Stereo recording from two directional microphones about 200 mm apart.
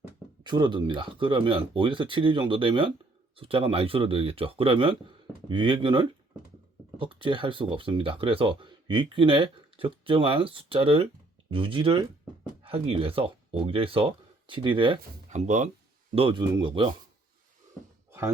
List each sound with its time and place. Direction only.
0.4 s speech: 20° right (ahead or behind)
15.3 s speech: 35° right (ahead or behind)
16.1 s speech: 25° right (ahead or behind)